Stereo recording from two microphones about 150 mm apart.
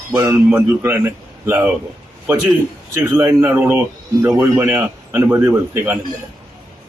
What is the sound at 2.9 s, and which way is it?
A man's voice, 20° right (ahead or behind).